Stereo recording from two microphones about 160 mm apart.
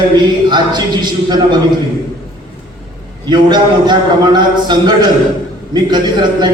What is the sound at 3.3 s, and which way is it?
A man's voice, 25° right (ahead or behind).